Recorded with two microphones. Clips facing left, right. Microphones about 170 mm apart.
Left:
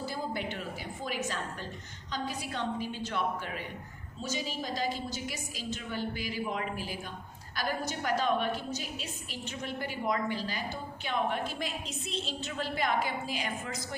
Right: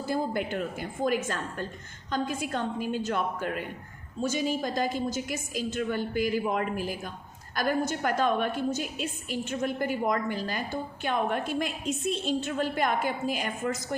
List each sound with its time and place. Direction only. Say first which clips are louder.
0.0 s a woman's voice: right 6 dB; 50° right (ahead or behind)